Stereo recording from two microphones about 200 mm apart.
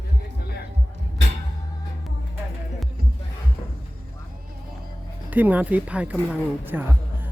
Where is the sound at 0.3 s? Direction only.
50° left (ahead or behind).